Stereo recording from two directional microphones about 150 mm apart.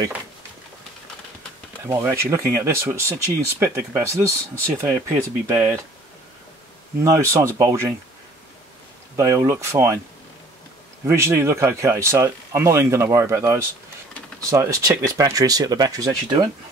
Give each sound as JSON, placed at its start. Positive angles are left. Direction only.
{"t": 1.9, "sound": "speech", "side_deg": -20}
{"t": 7.0, "sound": "speech", "side_deg": -20}
{"t": 9.1, "sound": "speech", "side_deg": -20}
{"t": 11.1, "sound": "speech", "side_deg": -15}